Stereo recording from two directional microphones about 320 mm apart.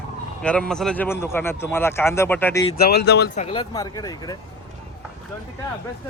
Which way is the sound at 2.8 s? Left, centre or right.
Left.